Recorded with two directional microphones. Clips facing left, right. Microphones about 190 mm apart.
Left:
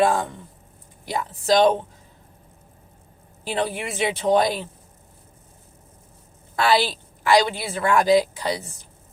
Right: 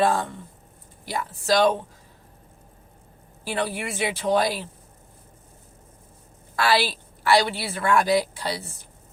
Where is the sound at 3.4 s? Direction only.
20° left (ahead or behind).